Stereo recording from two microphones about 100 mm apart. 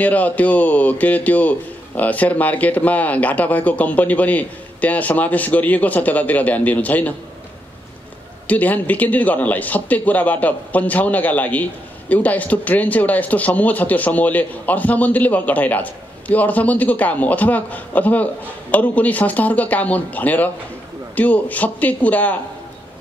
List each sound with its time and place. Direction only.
0.0 s speech: 15° left (ahead or behind)
8.5 s speech: 15° left (ahead or behind)